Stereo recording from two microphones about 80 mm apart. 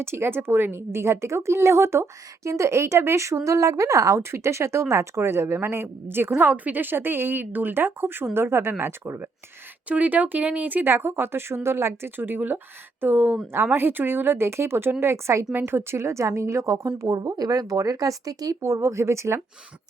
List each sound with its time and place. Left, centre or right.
0.0 s a woman's voice: right